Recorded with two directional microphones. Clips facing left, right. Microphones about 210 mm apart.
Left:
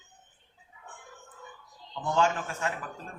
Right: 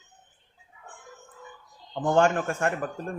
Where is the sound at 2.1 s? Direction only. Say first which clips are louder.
Right 5 dB; 55° right (ahead or behind).